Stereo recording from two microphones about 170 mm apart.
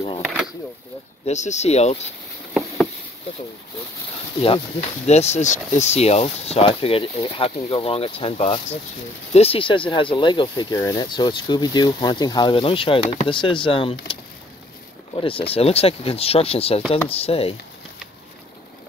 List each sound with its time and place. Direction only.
1.2 s speech: 45° left (ahead or behind)
4.4 s speech: 35° left (ahead or behind)
15.1 s speech: 30° left (ahead or behind)